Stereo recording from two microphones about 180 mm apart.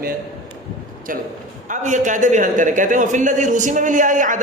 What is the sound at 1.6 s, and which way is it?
A man's voice, 45° right (ahead or behind).